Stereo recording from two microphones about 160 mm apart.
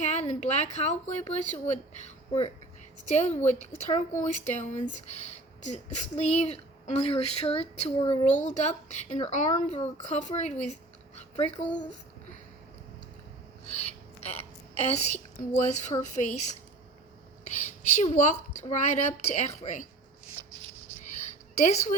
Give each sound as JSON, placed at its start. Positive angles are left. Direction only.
{"t": 0.0, "sound": "speech", "side_deg": 45}
{"t": 8.4, "sound": "speech", "side_deg": 50}
{"t": 10.7, "sound": "a sound", "side_deg": 45}
{"t": 13.7, "sound": "a woman's voice", "side_deg": 40}